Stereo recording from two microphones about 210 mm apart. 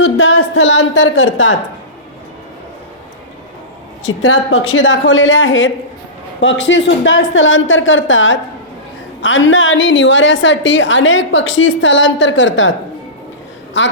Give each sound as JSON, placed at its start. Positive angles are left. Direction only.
{"t": 0.0, "sound": "a sound", "side_deg": 60}
{"t": 4.0, "sound": "a woman's voice", "side_deg": 65}
{"t": 13.7, "sound": "a woman's voice", "side_deg": 60}